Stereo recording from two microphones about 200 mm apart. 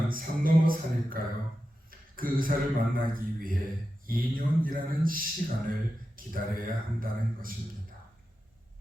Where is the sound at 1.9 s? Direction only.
45° right (ahead or behind).